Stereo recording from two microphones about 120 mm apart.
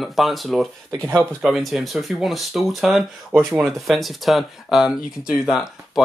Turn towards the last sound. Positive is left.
turn(degrees=0)  # may be behind; listen again after turning